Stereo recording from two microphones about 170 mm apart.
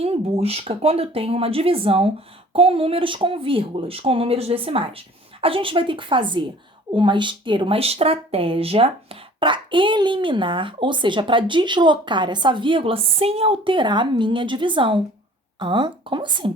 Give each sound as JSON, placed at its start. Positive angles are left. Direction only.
{"t": 0.0, "sound": "speech", "side_deg": -35}